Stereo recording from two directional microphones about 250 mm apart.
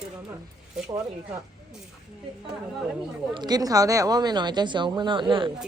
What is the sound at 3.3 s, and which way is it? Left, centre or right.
Speech, centre.